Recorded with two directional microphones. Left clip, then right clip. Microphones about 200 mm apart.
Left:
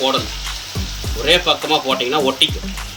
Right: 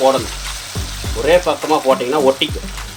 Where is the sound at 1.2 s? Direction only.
15° right (ahead or behind).